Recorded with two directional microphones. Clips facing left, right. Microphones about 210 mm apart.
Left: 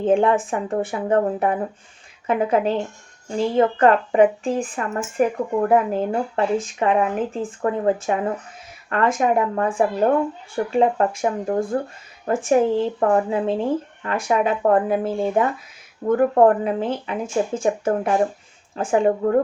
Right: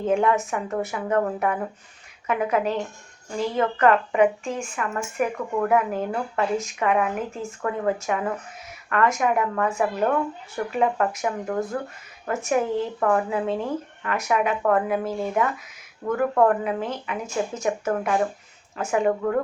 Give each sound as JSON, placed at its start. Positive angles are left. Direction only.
{"t": 0.0, "sound": "speech", "side_deg": 30}